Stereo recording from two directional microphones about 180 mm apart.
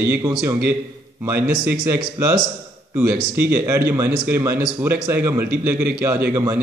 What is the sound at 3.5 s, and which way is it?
Speech, 10° right (ahead or behind).